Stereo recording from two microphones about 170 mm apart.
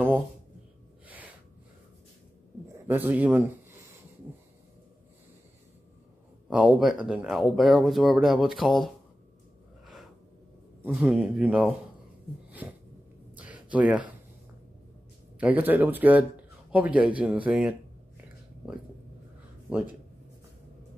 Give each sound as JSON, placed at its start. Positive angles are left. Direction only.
{"t": 2.9, "sound": "speech", "side_deg": -10}
{"t": 6.5, "sound": "speech", "side_deg": -5}
{"t": 10.9, "sound": "speech", "side_deg": -10}
{"t": 12.4, "sound": "a sound", "side_deg": -10}
{"t": 15.3, "sound": "speech", "side_deg": -10}
{"t": 19.7, "sound": "speech", "side_deg": -5}